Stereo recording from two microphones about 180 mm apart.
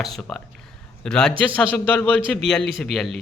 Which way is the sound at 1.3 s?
30° right (ahead or behind).